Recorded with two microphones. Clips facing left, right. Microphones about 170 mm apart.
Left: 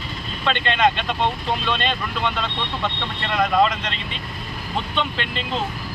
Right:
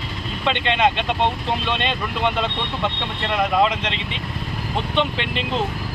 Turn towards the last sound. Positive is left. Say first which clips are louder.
# right 3 dB
turn(degrees=-20)  # may be behind; listen again after turning